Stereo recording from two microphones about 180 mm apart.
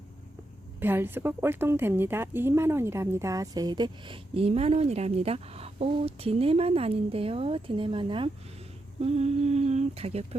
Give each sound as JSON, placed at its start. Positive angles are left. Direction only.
{"t": 0.8, "sound": "a woman's voice", "side_deg": -10}